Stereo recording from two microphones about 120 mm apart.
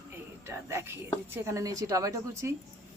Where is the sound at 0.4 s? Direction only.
20° right (ahead or behind).